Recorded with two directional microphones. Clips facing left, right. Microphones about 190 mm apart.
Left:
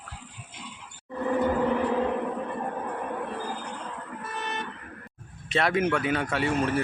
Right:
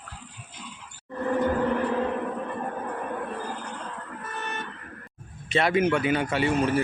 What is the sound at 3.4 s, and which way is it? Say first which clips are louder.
Vehicle: even; 10° left (ahead or behind).